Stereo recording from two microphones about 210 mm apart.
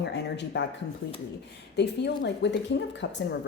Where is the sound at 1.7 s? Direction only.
55° left (ahead or behind).